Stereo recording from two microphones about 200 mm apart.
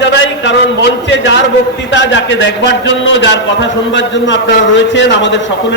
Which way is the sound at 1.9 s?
65° left (ahead or behind).